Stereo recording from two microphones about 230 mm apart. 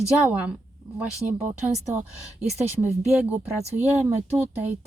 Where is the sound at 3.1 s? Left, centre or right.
Centre.